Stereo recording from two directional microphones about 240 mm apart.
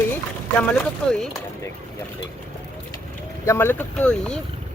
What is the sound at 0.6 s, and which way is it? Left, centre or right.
Speech, centre.